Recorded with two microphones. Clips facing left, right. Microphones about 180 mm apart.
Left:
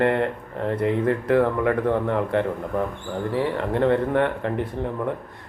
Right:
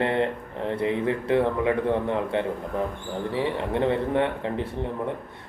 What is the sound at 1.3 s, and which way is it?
A man's voice, 20° right (ahead or behind).